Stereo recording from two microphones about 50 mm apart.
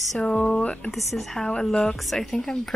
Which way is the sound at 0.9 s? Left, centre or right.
Centre.